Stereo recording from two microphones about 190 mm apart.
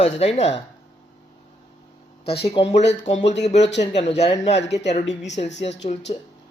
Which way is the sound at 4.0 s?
35° left (ahead or behind).